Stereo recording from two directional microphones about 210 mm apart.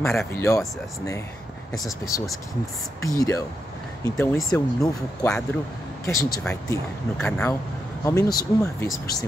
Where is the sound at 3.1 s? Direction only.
15° left (ahead or behind).